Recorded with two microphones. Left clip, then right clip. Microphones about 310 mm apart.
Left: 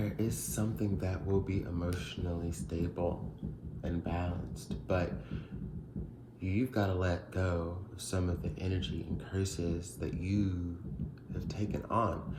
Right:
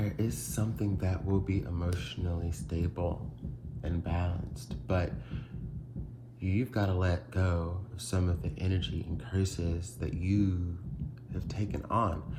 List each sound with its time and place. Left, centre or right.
0.0 s speech: right
6.4 s speech: right